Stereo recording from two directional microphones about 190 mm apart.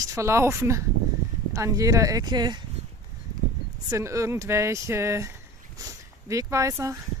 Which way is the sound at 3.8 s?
15° right (ahead or behind).